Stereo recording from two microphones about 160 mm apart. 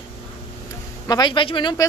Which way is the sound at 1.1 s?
25° left (ahead or behind).